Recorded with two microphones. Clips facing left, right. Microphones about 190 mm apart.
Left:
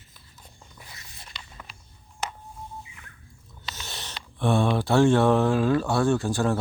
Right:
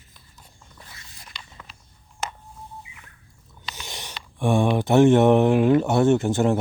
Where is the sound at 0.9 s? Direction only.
25° left (ahead or behind).